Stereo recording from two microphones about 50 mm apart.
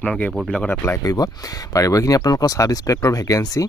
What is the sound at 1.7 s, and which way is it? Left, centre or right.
Speech, left.